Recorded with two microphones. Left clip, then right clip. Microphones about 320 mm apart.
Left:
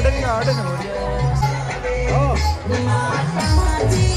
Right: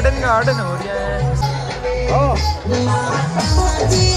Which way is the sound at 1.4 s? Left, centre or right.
Right.